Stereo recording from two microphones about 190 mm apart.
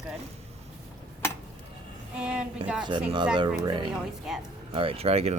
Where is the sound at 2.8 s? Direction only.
25° right (ahead or behind).